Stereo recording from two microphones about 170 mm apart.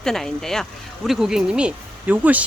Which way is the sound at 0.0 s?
5° left (ahead or behind).